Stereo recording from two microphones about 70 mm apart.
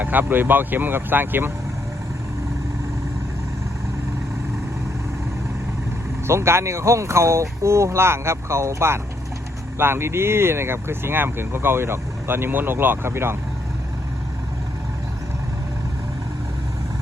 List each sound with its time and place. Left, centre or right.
0.0 s speech: right
6.2 s speech: right